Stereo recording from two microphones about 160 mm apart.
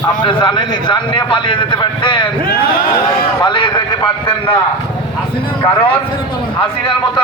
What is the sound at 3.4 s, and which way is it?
Speech, 30° left (ahead or behind).